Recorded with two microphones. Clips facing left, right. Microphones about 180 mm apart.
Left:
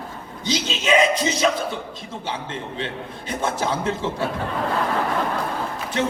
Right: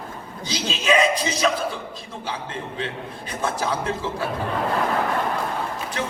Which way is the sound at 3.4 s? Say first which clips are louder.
Left 1 dB; 25° left (ahead or behind).